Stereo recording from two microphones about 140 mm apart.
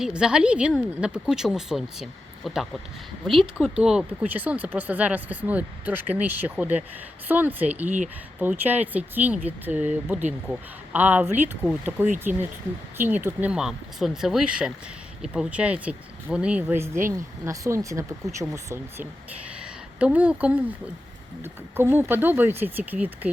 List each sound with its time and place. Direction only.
0.0 s speech: 5° right (ahead or behind); by 19.0 s 20° right (ahead or behind)
19.5 s speech: 10° right (ahead or behind)